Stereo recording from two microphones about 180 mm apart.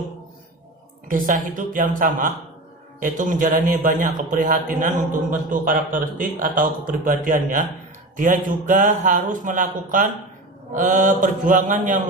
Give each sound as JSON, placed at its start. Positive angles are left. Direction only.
{"t": 1.1, "sound": "a man's voice", "side_deg": -45}